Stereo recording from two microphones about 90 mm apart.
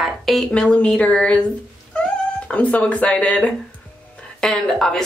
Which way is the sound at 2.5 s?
15° left (ahead or behind).